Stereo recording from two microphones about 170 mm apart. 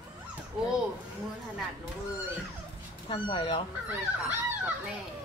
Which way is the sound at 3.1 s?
30° left (ahead or behind).